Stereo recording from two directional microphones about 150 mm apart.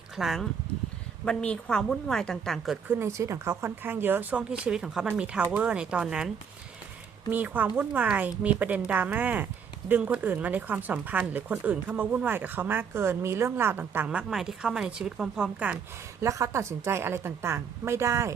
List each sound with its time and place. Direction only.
0.2 s a woman's voice: centre (ahead or behind)
2.8 s speech: 15° right (ahead or behind)
16.2 s speech: 20° right (ahead or behind)